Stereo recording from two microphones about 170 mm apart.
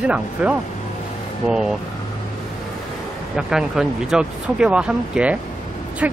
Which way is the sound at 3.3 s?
5° right (ahead or behind).